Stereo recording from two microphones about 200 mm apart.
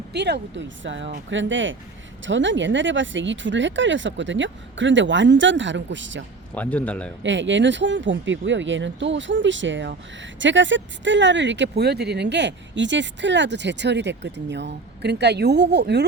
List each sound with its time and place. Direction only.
0.1 s speech: 60° right (ahead or behind)
6.5 s a man's voice: 5° left (ahead or behind)
7.2 s speech: 65° right (ahead or behind)